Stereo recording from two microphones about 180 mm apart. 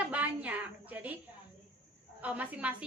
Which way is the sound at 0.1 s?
10° right (ahead or behind).